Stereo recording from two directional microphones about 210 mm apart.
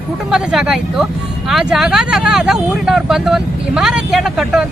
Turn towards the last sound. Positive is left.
turn(degrees=0)  # may be behind; listen again after turning